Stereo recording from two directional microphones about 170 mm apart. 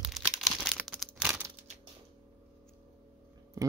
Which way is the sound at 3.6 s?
20° right (ahead or behind).